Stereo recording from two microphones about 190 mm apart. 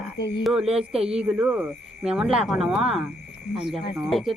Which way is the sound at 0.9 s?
5° right (ahead or behind).